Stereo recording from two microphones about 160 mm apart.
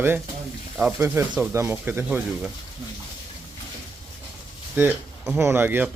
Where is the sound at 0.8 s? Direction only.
10° right (ahead or behind).